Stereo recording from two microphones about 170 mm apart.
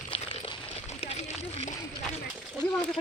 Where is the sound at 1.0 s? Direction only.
40° left (ahead or behind).